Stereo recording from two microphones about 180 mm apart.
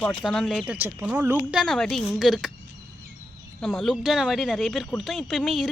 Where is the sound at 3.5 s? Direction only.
Centre (ahead or behind).